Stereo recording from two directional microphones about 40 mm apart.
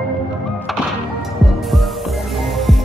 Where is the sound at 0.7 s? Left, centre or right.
Centre.